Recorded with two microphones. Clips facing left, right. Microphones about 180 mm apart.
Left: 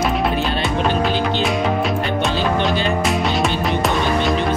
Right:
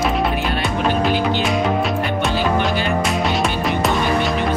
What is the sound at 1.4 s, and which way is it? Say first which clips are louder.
Music: even; centre (ahead or behind).